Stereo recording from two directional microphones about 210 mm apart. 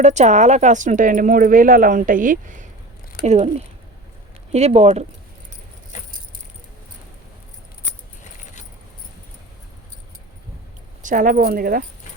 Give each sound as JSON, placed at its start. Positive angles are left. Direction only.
{"t": 0.0, "sound": "speech", "side_deg": -35}
{"t": 11.0, "sound": "speech", "side_deg": -40}